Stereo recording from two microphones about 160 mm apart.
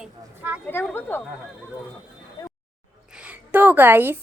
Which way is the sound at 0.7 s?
10° left (ahead or behind).